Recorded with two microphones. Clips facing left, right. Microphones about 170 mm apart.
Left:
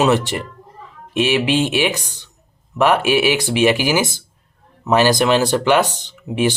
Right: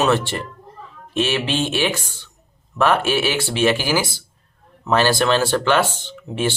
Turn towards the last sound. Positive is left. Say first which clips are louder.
# left 4 dB
turn(degrees=15)  # may be behind; listen again after turning